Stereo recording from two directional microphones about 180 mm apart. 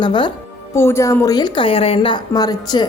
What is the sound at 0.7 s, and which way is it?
A woman's voice, 15° left (ahead or behind).